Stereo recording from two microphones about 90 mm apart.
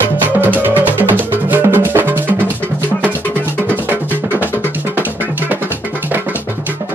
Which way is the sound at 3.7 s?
20° right (ahead or behind).